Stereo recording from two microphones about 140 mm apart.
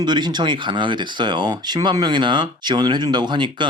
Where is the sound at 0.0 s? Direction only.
30° right (ahead or behind).